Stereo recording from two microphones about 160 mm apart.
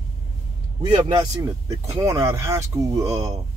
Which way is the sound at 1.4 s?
15° right (ahead or behind).